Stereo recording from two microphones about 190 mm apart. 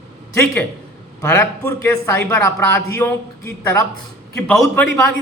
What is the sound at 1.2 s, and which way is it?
A man's voice, 10° left (ahead or behind).